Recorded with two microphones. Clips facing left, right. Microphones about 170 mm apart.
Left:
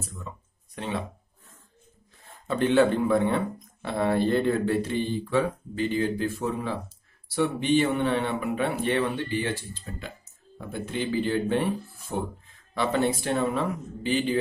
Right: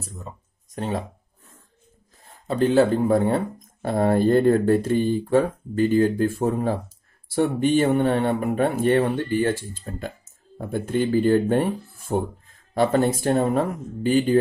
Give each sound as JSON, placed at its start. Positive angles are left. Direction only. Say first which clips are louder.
{"t": 0.0, "sound": "speech", "louder": "right 1 dB", "side_deg": -35}
{"t": 2.4, "sound": "speech", "louder": "right 3 dB", "side_deg": -35}